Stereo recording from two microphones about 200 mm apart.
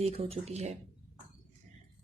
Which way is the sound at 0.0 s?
30° right (ahead or behind).